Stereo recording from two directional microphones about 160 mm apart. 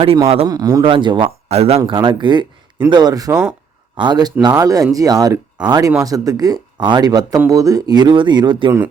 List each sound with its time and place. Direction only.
0.4 s speech: 25° right (ahead or behind); by 1.8 s 40° right (ahead or behind)
1.8 s speech: 30° right (ahead or behind)